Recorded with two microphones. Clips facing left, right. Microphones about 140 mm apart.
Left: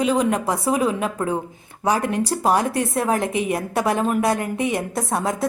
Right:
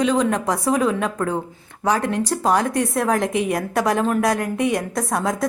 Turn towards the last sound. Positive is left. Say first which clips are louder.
# right 1 dB
turn(degrees=0)  # may be behind; listen again after turning